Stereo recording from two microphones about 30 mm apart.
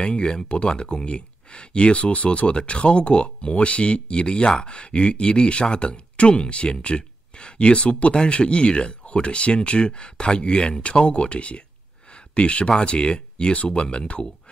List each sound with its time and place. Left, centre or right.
0.0 s speech: left
2.0 s speech: left
12.1 s a sound: left
12.6 s speech: left